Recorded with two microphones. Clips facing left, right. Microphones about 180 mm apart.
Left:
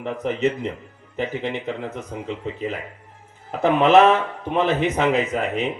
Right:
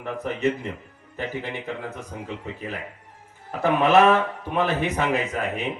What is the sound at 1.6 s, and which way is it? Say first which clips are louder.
Speech: left 4 dB; 20° left (ahead or behind).